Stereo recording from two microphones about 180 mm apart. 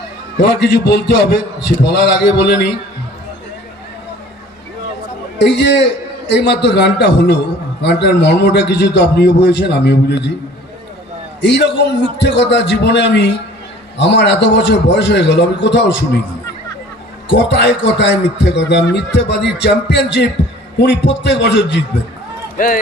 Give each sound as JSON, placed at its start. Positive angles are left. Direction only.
{"t": 0.3, "sound": "a man's voice", "side_deg": 70}
{"t": 5.4, "sound": "a man's voice", "side_deg": 70}
{"t": 11.3, "sound": "a man's voice", "side_deg": 70}
{"t": 17.2, "sound": "a man's voice", "side_deg": 70}
{"t": 22.5, "sound": "speech", "side_deg": 50}